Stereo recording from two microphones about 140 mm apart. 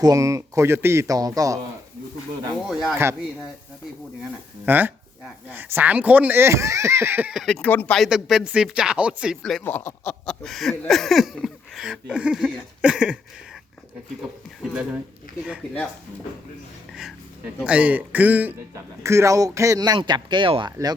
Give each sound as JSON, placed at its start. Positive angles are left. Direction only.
{"t": 0.0, "sound": "speech", "side_deg": -25}
{"t": 2.6, "sound": "speech", "side_deg": 0}
{"t": 4.2, "sound": "speech", "side_deg": -15}
{"t": 7.3, "sound": "speech", "side_deg": 5}
{"t": 9.6, "sound": "speech", "side_deg": 15}
{"t": 10.2, "sound": "speech", "side_deg": 0}
{"t": 16.9, "sound": "speech", "side_deg": -5}